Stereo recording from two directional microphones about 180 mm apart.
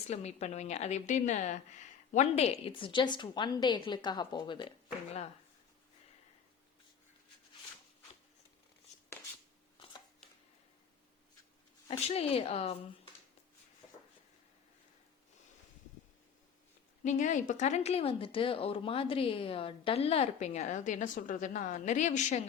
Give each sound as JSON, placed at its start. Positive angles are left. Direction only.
{"t": 0.1, "sound": "speech", "side_deg": 35}
{"t": 9.7, "sound": "chopping", "side_deg": 25}
{"t": 11.9, "sound": "speech", "side_deg": 35}
{"t": 17.0, "sound": "speech", "side_deg": 40}